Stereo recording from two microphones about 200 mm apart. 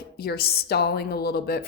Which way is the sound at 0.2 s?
50° left (ahead or behind).